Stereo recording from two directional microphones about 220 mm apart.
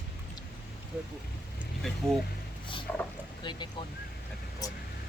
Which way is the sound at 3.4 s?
20° left (ahead or behind).